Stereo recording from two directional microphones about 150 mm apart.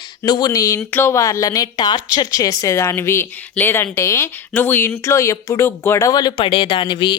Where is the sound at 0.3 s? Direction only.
25° left (ahead or behind).